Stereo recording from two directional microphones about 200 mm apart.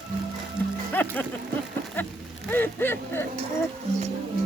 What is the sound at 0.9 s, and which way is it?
Speech, 10° left (ahead or behind).